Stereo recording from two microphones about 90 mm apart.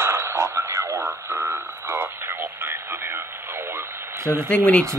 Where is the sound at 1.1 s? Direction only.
25° right (ahead or behind).